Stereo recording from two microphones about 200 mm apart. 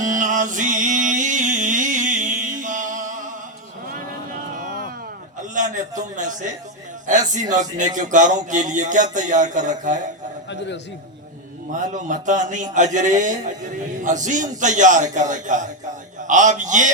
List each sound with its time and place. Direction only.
0.0 s music: 40° right (ahead or behind)
5.5 s a sound: 40° right (ahead or behind)
7.5 s speech: 40° right (ahead or behind)
11.7 s speech: 40° right (ahead or behind)